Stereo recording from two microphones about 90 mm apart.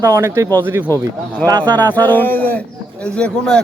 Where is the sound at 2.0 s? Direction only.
20° left (ahead or behind).